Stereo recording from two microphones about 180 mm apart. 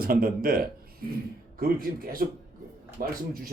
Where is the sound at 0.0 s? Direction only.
55° right (ahead or behind).